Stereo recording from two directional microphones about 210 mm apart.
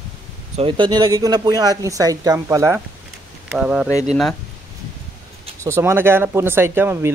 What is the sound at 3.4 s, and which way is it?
Speech, 5° right (ahead or behind).